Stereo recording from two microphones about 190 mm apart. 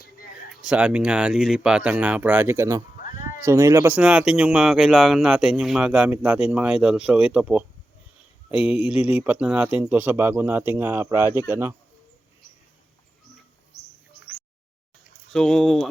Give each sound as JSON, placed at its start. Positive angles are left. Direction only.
{"t": 0.6, "sound": "speech", "side_deg": -5}
{"t": 15.3, "sound": "speech", "side_deg": 5}